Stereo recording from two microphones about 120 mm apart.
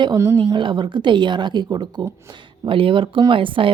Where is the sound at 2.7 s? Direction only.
45° right (ahead or behind).